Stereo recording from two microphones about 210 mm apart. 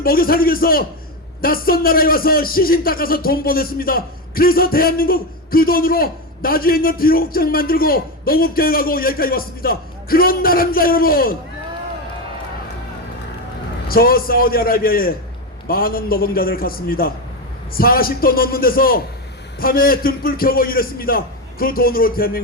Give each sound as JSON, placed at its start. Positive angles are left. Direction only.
{"t": 0.0, "sound": "a man's voice", "side_deg": 45}
{"t": 13.8, "sound": "a man's voice", "side_deg": 45}